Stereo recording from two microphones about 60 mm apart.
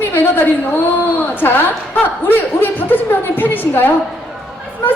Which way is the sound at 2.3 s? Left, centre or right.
Left.